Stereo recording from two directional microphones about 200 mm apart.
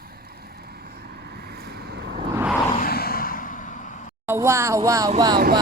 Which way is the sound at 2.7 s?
50° left (ahead or behind).